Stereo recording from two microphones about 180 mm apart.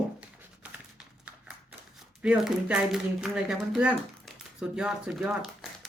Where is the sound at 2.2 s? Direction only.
5° right (ahead or behind).